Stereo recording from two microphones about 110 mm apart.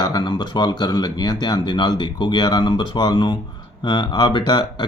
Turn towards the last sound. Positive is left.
turn(degrees=45)  # may be behind; listen again after turning